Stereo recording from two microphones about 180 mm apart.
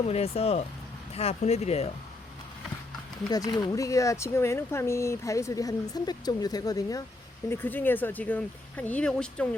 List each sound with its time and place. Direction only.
0.1 s speech: 35° left (ahead or behind)
3.2 s speech: 20° left (ahead or behind); by 9.6 s 5° left (ahead or behind)